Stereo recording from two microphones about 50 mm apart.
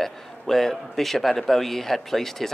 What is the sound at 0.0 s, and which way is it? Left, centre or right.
A man's voice, centre.